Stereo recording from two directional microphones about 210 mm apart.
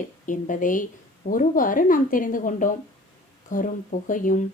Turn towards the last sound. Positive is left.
turn(degrees=40)  # may be behind; listen again after turning